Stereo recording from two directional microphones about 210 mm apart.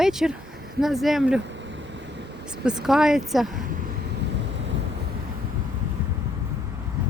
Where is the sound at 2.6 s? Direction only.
5° right (ahead or behind).